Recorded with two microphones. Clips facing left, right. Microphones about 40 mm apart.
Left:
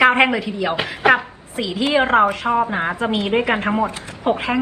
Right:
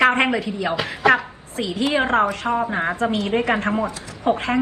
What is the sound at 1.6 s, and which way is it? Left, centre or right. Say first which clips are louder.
Speech: left 3 dB; left.